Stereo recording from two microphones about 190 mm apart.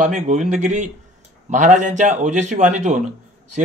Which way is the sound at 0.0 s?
40° right (ahead or behind).